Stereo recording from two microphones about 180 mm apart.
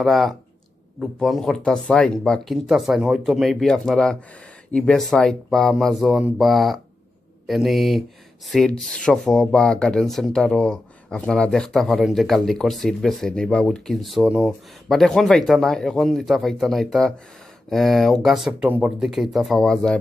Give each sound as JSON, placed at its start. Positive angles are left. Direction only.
{"t": 0.0, "sound": "speech", "side_deg": 0}